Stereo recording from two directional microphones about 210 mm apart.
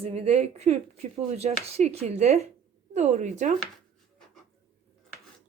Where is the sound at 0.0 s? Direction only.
30° right (ahead or behind).